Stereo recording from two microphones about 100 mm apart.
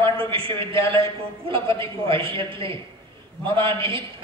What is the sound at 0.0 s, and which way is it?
A man's voice, 65° right (ahead or behind).